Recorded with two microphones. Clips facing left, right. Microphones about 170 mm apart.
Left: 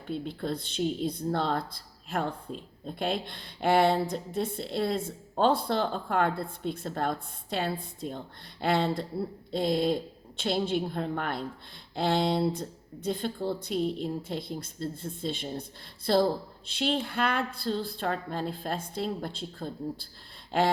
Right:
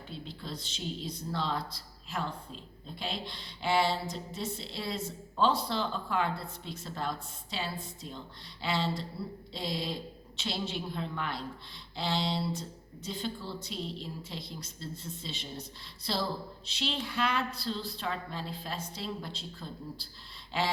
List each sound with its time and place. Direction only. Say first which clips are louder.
0.1 s speech: left 10 dB; 55° left (ahead or behind)